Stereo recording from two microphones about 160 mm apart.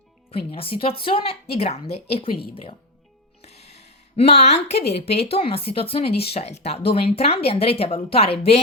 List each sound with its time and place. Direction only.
0.3 s a woman's voice: 35° left (ahead or behind)
3.4 s music: 40° left (ahead or behind)
4.4 s a woman's voice: 40° left (ahead or behind)